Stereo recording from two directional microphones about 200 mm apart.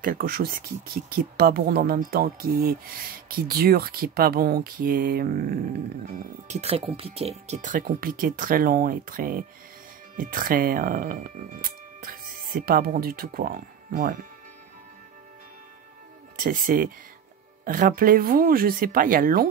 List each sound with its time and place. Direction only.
0.0 s speech: 45° right (ahead or behind)
6.4 s speech: 35° right (ahead or behind)
16.4 s speech: 45° right (ahead or behind)